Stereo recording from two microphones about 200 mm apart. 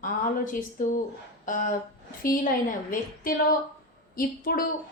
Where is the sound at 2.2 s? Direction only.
40° left (ahead or behind).